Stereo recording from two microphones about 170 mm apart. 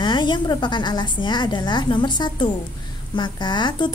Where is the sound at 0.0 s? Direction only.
25° left (ahead or behind).